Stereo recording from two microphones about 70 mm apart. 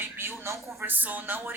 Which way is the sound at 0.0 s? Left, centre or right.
Right.